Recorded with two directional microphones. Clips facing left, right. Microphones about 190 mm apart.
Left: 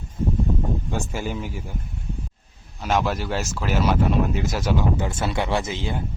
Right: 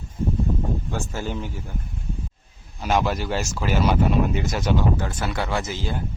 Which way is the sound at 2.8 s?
Centre (ahead or behind).